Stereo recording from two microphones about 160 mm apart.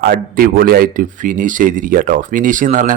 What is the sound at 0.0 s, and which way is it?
Speech, 65° right (ahead or behind).